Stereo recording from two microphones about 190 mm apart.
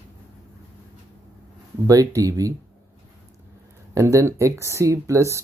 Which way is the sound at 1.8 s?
15° right (ahead or behind).